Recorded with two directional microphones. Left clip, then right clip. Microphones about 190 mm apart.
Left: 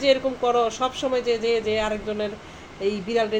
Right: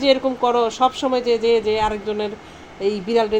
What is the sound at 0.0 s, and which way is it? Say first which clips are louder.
Speech: right 3 dB; 45° right (ahead or behind).